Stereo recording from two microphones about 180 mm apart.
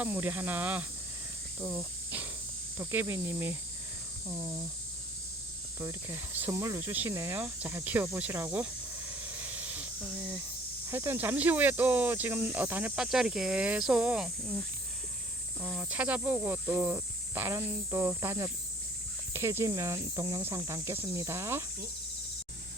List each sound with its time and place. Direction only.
0.0 s speech: 10° right (ahead or behind)
5.8 s speech: 15° right (ahead or behind)
9.2 s hiss: 10° right (ahead or behind)
10.8 s speech: 15° right (ahead or behind)
15.6 s speech: 10° right (ahead or behind)